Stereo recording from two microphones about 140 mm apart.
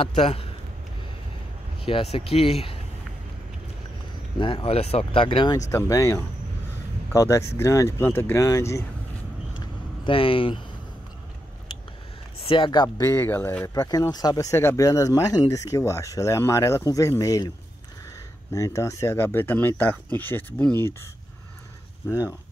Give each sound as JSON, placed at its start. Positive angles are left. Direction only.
{"t": 0.0, "sound": "speech", "side_deg": 45}
{"t": 1.8, "sound": "speech", "side_deg": 40}
{"t": 4.4, "sound": "speech", "side_deg": 35}
{"t": 5.7, "sound": "speech", "side_deg": 20}
{"t": 9.6, "sound": "vehicle", "side_deg": 40}
{"t": 12.4, "sound": "speech", "side_deg": 40}
{"t": 13.1, "sound": "speech", "side_deg": 15}
{"t": 13.7, "sound": "speech", "side_deg": 25}
{"t": 18.5, "sound": "speech", "side_deg": 20}